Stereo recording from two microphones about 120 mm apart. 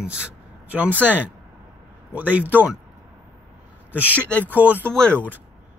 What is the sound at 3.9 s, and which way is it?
Speech, 15° right (ahead or behind).